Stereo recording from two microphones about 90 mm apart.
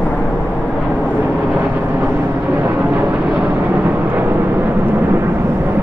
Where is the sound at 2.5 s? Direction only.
20° right (ahead or behind).